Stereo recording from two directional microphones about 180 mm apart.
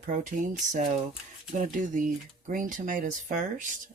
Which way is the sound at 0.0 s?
45° right (ahead or behind).